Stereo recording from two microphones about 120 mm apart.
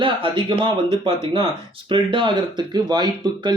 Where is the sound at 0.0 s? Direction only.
45° right (ahead or behind).